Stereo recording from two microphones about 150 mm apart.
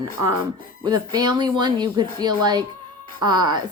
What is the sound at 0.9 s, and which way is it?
Speech, 25° right (ahead or behind).